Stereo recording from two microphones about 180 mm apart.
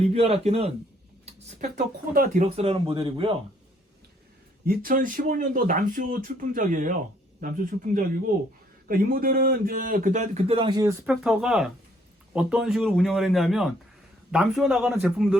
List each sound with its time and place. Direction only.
0.0 s speech: 35° right (ahead or behind); by 2.5 s 50° right (ahead or behind)
2.6 s speech: 30° right (ahead or behind)
4.6 s speech: 55° right (ahead or behind)
8.9 s speech: 55° right (ahead or behind); by 10.9 s 20° right (ahead or behind)
11.0 s a man's voice: 5° right (ahead or behind)